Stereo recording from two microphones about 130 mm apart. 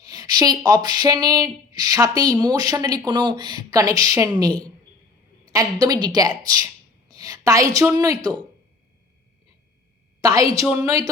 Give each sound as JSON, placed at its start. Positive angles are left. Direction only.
{"t": 0.0, "sound": "a woman's voice", "side_deg": -30}
{"t": 10.2, "sound": "a woman's voice", "side_deg": -30}